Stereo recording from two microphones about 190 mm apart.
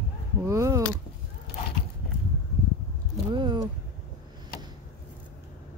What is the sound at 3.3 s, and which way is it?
Speech, 25° right (ahead or behind).